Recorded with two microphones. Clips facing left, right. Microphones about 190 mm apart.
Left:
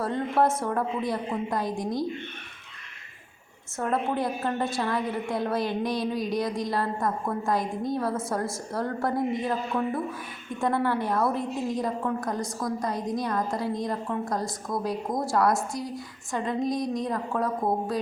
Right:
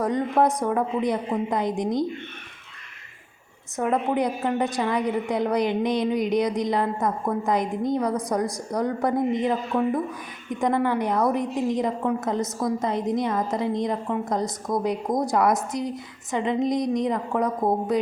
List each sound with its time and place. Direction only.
0.0 s a woman's voice: 15° right (ahead or behind)
3.8 s a woman's voice: 15° right (ahead or behind)